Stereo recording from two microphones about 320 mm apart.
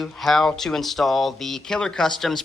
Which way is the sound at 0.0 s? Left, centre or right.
Centre.